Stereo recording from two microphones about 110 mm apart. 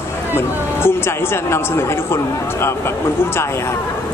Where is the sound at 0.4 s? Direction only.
20° left (ahead or behind).